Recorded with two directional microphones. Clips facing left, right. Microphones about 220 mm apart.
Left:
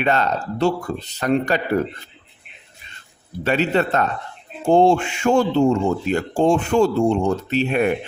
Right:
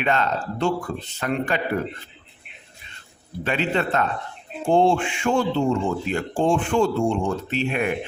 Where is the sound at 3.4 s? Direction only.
40° left (ahead or behind).